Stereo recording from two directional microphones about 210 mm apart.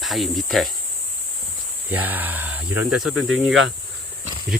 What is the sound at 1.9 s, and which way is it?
Speech, 10° right (ahead or behind).